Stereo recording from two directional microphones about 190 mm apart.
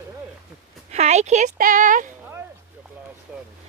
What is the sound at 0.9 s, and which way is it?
Speech, 35° right (ahead or behind).